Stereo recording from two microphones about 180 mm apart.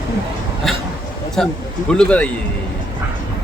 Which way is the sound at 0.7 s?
Centre (ahead or behind).